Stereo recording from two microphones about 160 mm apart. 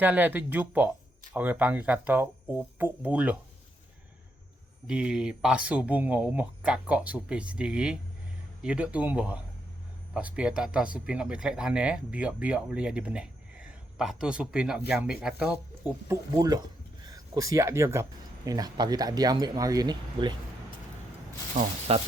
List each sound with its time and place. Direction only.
0.0 s speech: 10° right (ahead or behind)
4.9 s speech: 5° right (ahead or behind)
16.3 s speech: 25° right (ahead or behind)
21.9 s speech: 40° right (ahead or behind)